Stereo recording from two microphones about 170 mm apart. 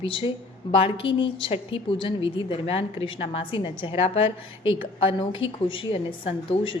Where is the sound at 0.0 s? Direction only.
30° left (ahead or behind).